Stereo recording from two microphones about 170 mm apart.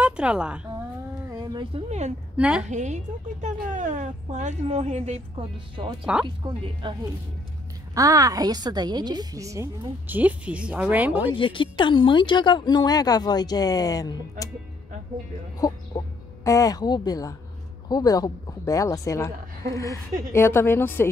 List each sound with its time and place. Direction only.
0.0 s a woman's voice: 5° right (ahead or behind)
1.3 s a woman's voice: 25° right (ahead or behind); by 2.1 s 40° right (ahead or behind)
2.3 s a woman's voice: 5° right (ahead or behind)
2.6 s a woman's voice: 45° right (ahead or behind); by 11.2 s 10° right (ahead or behind)
11.3 s speech: 30° left (ahead or behind)
15.6 s a woman's voice: 20° left (ahead or behind)